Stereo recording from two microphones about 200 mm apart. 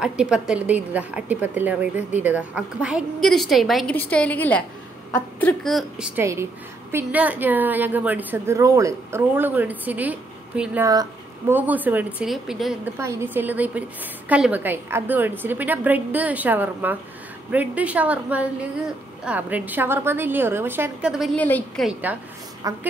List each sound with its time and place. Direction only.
0.0 s a woman's voice: 5° right (ahead or behind)
13.0 s a woman's voice: 10° right (ahead or behind); by 21.9 s 5° left (ahead or behind)
22.7 s a woman's voice: 15° right (ahead or behind)